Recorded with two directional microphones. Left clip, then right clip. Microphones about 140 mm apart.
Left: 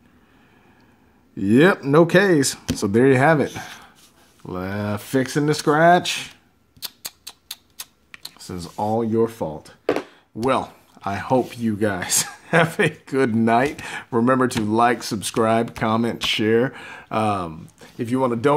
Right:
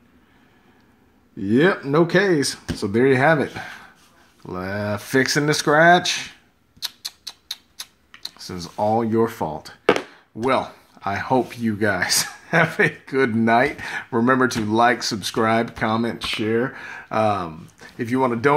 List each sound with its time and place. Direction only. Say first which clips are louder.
1.4 s speech: left 2 dB; 25° left (ahead or behind)
8.4 s speech: right 2 dB; 20° left (ahead or behind)
8.9 s speech: left 2 dB; centre (ahead or behind)
10.3 s speech: even; 20° left (ahead or behind); by 16.7 s 45° left (ahead or behind)
16.7 s speech: right 2 dB; 25° left (ahead or behind)